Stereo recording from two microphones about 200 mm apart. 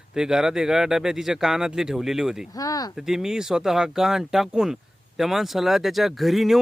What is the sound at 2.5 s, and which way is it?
Speech, 15° left (ahead or behind).